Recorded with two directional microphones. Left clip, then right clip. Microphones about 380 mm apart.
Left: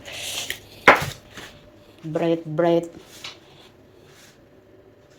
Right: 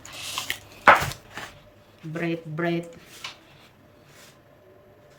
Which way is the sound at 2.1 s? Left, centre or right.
Centre.